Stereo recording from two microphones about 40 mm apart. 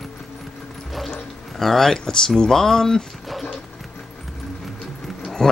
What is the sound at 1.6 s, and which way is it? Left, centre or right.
Speech, centre.